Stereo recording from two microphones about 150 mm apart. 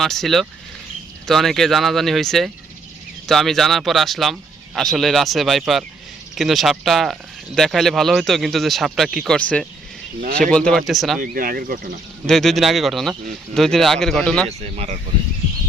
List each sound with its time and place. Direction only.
0.0 s speech: centre (ahead or behind)
9.3 s speech: 10° left (ahead or behind)
11.2 s speech: 70° right (ahead or behind)
12.2 s speech: centre (ahead or behind)